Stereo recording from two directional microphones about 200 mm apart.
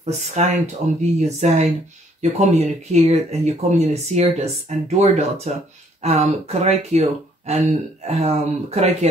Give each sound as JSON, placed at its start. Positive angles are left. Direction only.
{"t": 0.0, "sound": "speech", "side_deg": -35}